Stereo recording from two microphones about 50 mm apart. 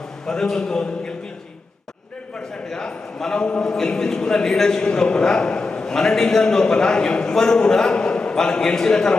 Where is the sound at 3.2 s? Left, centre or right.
Centre.